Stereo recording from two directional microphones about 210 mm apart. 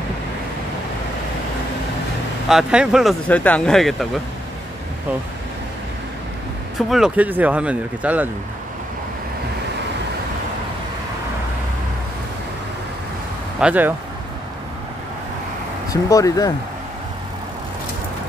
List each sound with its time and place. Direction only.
2.4 s speech: 5° right (ahead or behind)
6.9 s speech: 5° right (ahead or behind)
13.6 s speech: 5° right (ahead or behind)
15.9 s speech: 15° left (ahead or behind)